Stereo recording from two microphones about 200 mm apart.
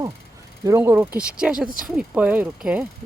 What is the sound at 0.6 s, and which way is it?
Speech, 15° right (ahead or behind).